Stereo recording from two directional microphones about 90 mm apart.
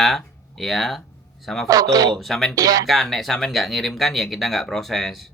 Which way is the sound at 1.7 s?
45° right (ahead or behind).